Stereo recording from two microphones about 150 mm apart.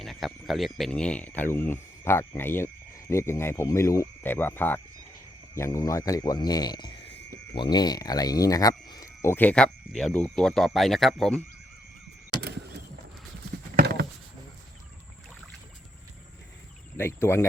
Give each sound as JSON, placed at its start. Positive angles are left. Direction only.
{"t": 0.0, "sound": "speech", "side_deg": 0}
{"t": 12.4, "sound": "a sound", "side_deg": -90}
{"t": 17.0, "sound": "speech", "side_deg": 15}